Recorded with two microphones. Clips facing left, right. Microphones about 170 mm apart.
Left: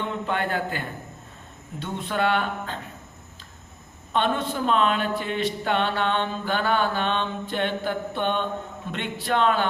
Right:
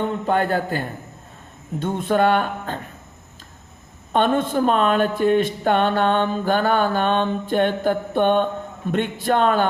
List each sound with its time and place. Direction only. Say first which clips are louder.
0.0 s speech: right 6 dB; 45° right (ahead or behind)
4.1 s speech: right 6 dB; 50° right (ahead or behind)